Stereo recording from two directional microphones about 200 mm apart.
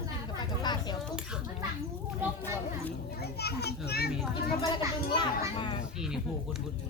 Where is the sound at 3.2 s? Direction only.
55° left (ahead or behind).